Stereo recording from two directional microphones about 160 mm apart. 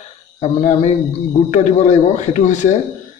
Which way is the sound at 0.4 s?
50° left (ahead or behind).